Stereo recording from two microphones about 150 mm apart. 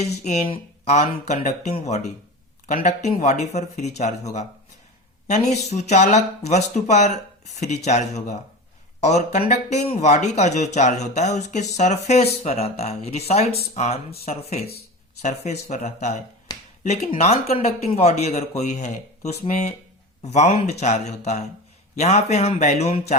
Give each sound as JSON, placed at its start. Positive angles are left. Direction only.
{"t": 0.4, "sound": "speech", "side_deg": 35}
{"t": 0.9, "sound": "speech", "side_deg": 50}
{"t": 16.5, "sound": "finger snapping", "side_deg": 30}
{"t": 16.8, "sound": "speech", "side_deg": 45}